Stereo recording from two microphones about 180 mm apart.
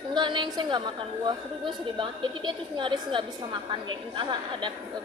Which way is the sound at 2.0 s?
25° right (ahead or behind).